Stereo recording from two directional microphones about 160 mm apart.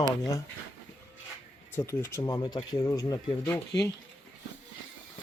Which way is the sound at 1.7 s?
15° left (ahead or behind).